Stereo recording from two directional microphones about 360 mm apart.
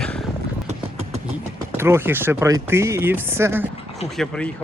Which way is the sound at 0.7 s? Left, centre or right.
Centre.